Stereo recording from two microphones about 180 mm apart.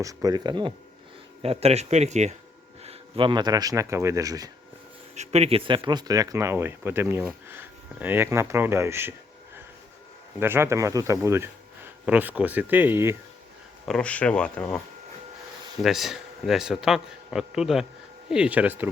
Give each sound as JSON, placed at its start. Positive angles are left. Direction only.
{"t": 0.0, "sound": "speech", "side_deg": -20}
{"t": 2.8, "sound": "speech", "side_deg": -30}
{"t": 5.1, "sound": "speech", "side_deg": -35}
{"t": 10.4, "sound": "speech", "side_deg": -15}
{"t": 13.8, "sound": "speech", "side_deg": 5}
{"t": 15.8, "sound": "a man's voice", "side_deg": 0}